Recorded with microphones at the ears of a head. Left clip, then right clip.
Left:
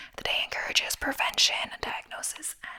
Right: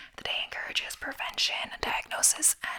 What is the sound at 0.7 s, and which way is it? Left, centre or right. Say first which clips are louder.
Speech: left 5 dB; left.